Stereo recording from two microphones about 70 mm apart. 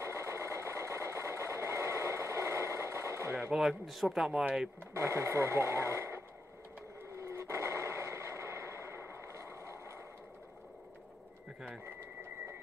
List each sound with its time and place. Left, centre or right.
0.0 s sewing machine: right
3.5 s speech: centre
4.9 s speech: right
7.2 s a sound: right